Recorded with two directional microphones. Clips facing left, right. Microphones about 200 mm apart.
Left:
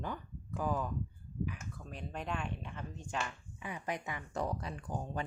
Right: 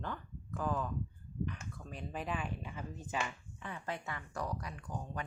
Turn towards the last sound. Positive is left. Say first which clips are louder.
# left 3 dB
turn(degrees=30)  # may be behind; listen again after turning